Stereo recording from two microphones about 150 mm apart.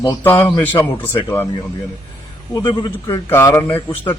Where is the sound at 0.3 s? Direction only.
15° left (ahead or behind).